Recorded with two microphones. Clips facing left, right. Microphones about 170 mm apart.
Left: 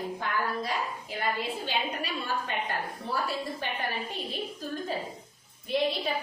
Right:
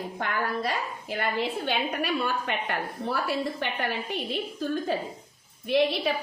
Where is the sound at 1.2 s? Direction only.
60° right (ahead or behind).